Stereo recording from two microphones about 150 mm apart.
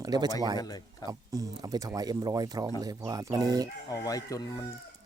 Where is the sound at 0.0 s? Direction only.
25° right (ahead or behind).